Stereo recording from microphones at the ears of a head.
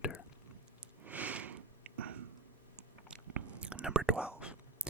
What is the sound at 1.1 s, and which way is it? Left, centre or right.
Sniff, right.